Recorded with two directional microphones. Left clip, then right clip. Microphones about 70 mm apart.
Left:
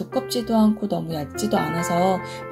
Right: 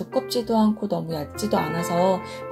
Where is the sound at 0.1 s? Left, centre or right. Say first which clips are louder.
Even; right.